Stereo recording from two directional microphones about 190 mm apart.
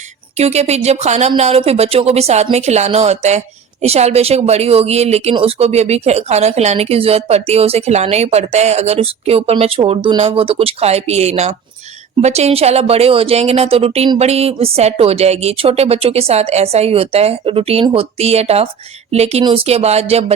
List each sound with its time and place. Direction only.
0.3 s a woman's voice: 35° right (ahead or behind)